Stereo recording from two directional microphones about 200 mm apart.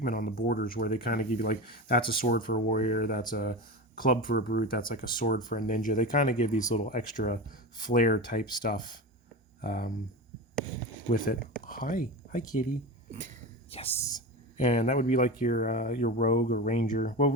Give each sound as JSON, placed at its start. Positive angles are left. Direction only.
{"t": 0.0, "sound": "speech", "side_deg": 45}
{"t": 11.1, "sound": "speech", "side_deg": 45}
{"t": 13.7, "sound": "speech", "side_deg": 30}